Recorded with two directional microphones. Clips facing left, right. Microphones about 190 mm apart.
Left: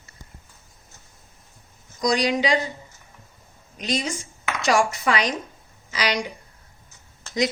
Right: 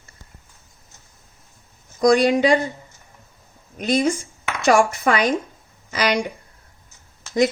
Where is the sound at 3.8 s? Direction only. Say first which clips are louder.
Right 7 dB; 55° right (ahead or behind).